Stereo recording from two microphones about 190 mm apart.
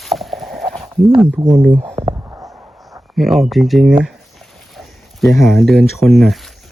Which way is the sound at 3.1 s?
Centre (ahead or behind).